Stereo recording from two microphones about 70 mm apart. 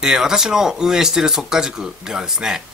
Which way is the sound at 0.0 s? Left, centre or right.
Centre.